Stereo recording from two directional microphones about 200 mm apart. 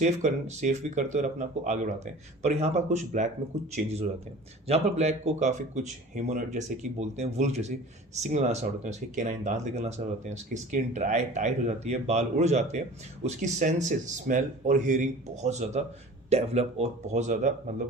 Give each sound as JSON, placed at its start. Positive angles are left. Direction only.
{"t": 0.0, "sound": "speech", "side_deg": -35}
{"t": 4.7, "sound": "speech", "side_deg": -35}